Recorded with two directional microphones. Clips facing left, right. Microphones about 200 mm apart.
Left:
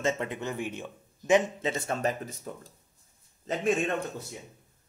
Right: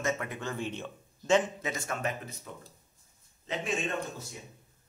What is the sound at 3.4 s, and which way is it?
Speech, 45° left (ahead or behind).